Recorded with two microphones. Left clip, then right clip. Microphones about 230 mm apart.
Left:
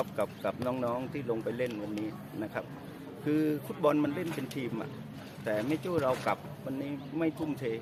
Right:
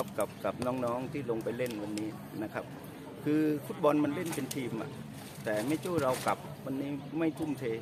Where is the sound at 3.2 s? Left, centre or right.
Centre.